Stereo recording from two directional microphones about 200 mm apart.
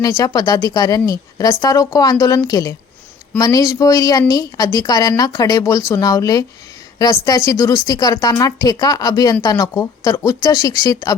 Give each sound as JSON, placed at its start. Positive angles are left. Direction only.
{"t": 0.0, "sound": "speech", "side_deg": 20}